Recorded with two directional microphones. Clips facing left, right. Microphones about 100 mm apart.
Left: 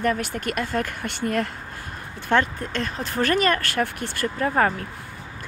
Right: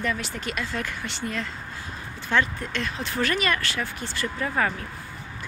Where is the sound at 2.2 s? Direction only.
45° left (ahead or behind).